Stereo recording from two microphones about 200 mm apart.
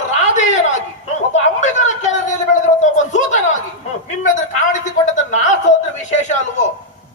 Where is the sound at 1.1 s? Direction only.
35° left (ahead or behind).